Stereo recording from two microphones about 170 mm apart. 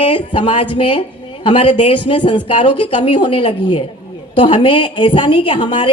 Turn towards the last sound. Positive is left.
turn(degrees=30)  # may be behind; listen again after turning